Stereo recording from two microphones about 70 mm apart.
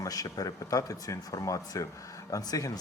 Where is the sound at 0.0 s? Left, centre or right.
Left.